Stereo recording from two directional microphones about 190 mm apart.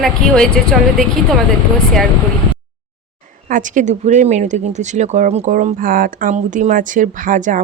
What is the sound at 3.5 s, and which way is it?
Speech, 40° right (ahead or behind).